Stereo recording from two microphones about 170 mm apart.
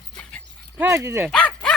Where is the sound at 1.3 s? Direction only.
5° left (ahead or behind).